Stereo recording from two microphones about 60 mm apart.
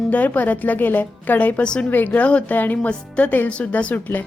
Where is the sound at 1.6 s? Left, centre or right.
Centre.